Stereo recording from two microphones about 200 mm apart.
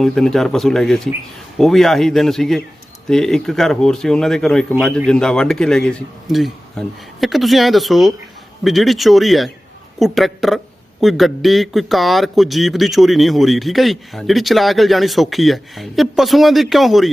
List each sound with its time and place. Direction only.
0.0 s speech: 5° left (ahead or behind)